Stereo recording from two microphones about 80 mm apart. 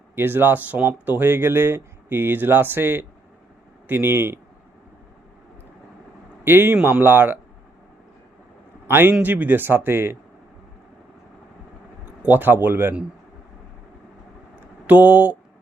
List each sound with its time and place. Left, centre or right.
0.2 s speech: right
6.4 s a man's voice: right
8.9 s speech: right
12.2 s speech: right
14.8 s speech: right